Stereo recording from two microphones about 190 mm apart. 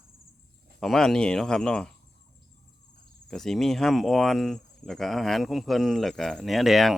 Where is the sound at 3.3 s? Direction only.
Centre (ahead or behind).